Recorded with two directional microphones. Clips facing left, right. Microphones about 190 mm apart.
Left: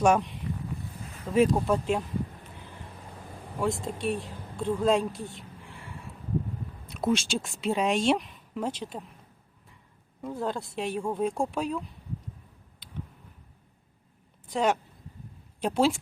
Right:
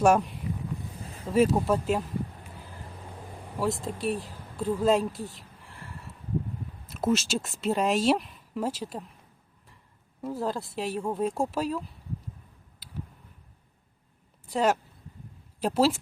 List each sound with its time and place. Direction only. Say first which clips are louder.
0.0 s speech: right 1 dB; 5° right (ahead or behind)
1.0 s a sound: right 1 dB; 30° right (ahead or behind)
1.3 s speech: even; centre (ahead or behind)
3.6 s speech: even; centre (ahead or behind)
10.2 s speech: right 1 dB; centre (ahead or behind)
14.5 s speech: right 1 dB; 5° right (ahead or behind)